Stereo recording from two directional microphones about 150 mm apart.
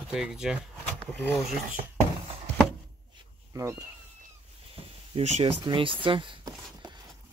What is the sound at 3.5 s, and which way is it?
Speech, 20° right (ahead or behind).